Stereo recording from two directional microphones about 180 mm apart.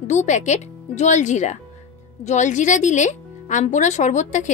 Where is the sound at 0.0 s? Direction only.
40° left (ahead or behind).